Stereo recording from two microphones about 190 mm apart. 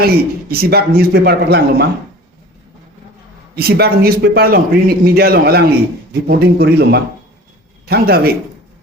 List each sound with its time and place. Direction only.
0.0 s a man's voice: 55° right (ahead or behind)
3.5 s a man's voice: 55° right (ahead or behind)